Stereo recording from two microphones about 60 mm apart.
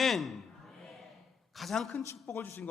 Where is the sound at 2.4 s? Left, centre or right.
Left.